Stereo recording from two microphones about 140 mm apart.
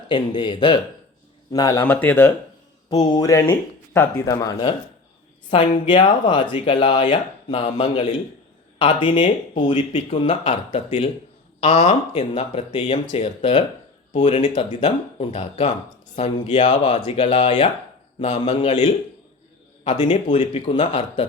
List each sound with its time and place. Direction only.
0.1 s speech: 35° left (ahead or behind)
1.5 s speech: 25° left (ahead or behind)
1.8 s speech: 15° left (ahead or behind)
2.9 s speech: 30° left (ahead or behind)
5.9 s a man's voice: 35° left (ahead or behind)